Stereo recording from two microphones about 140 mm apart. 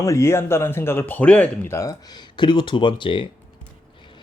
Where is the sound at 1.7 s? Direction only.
25° left (ahead or behind).